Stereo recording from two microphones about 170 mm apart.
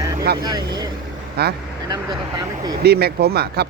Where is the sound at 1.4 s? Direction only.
70° right (ahead or behind).